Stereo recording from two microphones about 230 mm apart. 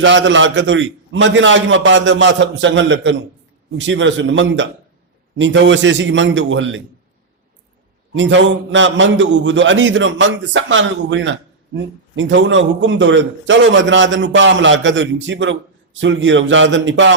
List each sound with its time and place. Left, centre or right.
0.0 s a man's voice: right
8.1 s a man's voice: right